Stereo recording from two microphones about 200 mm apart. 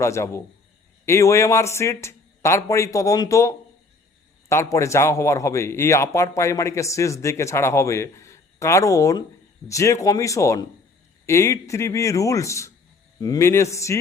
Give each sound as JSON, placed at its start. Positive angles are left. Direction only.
{"t": 0.0, "sound": "a man's voice", "side_deg": 15}